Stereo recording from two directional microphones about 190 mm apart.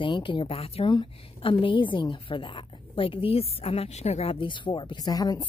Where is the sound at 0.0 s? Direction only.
25° left (ahead or behind).